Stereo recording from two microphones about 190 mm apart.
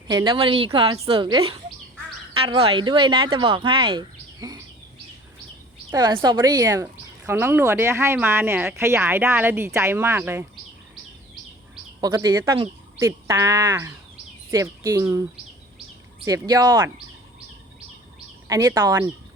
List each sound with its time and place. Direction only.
0.1 s speech: 25° right (ahead or behind)
5.9 s speech: 20° right (ahead or behind)
11.9 s speech: 20° right (ahead or behind)
16.2 s speech: 15° right (ahead or behind)
18.4 s speech: 15° right (ahead or behind)